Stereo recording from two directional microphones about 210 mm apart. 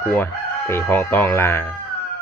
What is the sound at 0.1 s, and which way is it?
Speech, 10° left (ahead or behind).